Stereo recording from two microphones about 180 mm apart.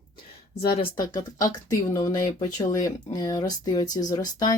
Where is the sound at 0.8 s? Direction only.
25° left (ahead or behind).